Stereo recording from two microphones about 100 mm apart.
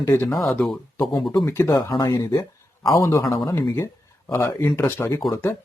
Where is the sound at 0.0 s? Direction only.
25° left (ahead or behind).